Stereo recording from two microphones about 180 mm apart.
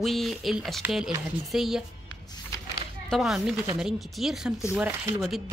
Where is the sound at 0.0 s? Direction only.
Centre (ahead or behind).